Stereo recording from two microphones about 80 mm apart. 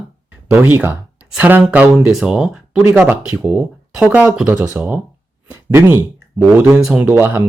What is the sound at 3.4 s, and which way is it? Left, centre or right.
Speech, centre.